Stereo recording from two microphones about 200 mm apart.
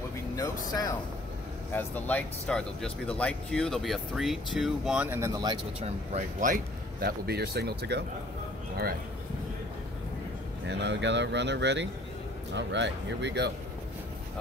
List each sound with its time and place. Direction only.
1.7 s speech: 10° left (ahead or behind); by 8.0 s 55° right (ahead or behind)
10.7 s speech: 60° right (ahead or behind)